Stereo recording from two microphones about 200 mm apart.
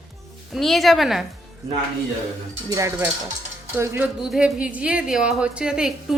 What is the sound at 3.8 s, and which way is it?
Speech, 5° right (ahead or behind).